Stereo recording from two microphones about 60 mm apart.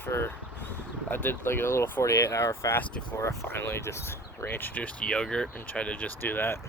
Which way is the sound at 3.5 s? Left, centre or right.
Left.